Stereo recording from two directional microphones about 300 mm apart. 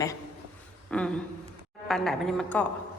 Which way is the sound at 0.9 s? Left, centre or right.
Centre.